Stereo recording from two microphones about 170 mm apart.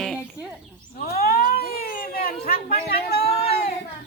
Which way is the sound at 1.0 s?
65° left (ahead or behind).